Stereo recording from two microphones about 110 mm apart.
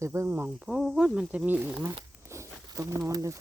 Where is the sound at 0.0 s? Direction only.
25° right (ahead or behind).